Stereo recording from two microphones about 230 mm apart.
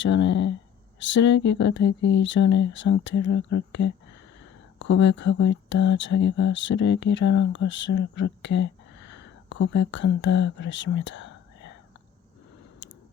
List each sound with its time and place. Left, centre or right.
0.0 s speech: left